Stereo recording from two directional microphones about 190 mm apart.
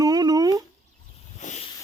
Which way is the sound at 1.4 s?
35° left (ahead or behind).